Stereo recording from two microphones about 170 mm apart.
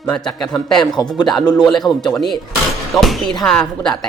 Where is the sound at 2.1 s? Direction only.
Centre (ahead or behind).